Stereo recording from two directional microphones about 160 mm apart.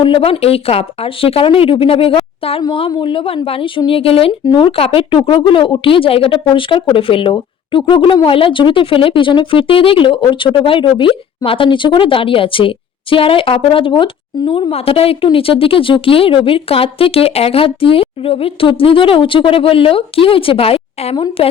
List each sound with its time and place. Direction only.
0.0 s speech: 35° left (ahead or behind)